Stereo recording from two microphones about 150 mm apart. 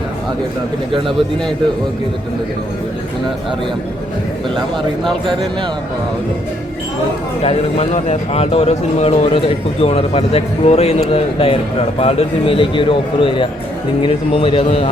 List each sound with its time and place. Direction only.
7.4 s a man's voice: 45° left (ahead or behind)